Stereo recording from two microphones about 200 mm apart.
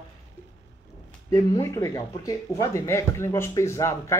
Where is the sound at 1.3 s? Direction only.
15° left (ahead or behind).